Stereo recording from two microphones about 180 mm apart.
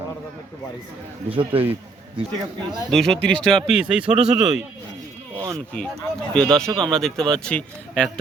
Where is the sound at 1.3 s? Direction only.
30° right (ahead or behind).